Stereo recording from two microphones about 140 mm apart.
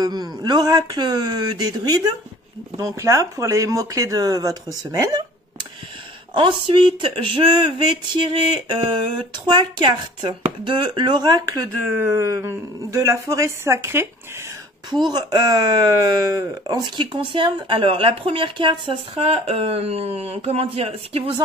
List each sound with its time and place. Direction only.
0.0 s speech: 30° right (ahead or behind)
4.9 s a sound: 30° right (ahead or behind)
6.3 s speech: 40° right (ahead or behind)
11.8 s speech: 15° right (ahead or behind)
14.9 s speech: 30° right (ahead or behind)